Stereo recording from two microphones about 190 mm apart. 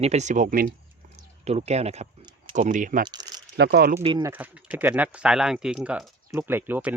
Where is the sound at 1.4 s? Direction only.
35° right (ahead or behind).